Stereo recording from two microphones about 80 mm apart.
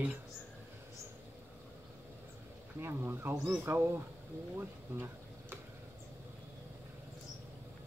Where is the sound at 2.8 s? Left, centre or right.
Right.